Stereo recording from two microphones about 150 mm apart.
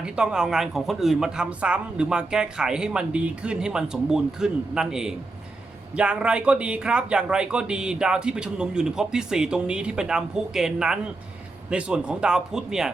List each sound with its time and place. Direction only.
0.0 s speech: 5° right (ahead or behind)